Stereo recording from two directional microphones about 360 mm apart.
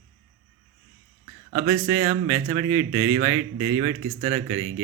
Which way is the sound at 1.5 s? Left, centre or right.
Centre.